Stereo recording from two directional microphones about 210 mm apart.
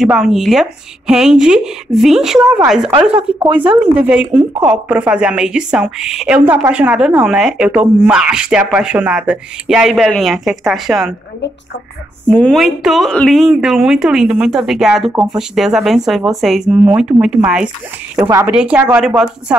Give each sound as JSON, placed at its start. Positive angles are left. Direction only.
{"t": 0.0, "sound": "a woman's voice", "side_deg": 0}
{"t": 3.4, "sound": "speech", "side_deg": -20}
{"t": 3.8, "sound": "a woman's voice", "side_deg": -5}
{"t": 12.3, "sound": "a woman's voice", "side_deg": 5}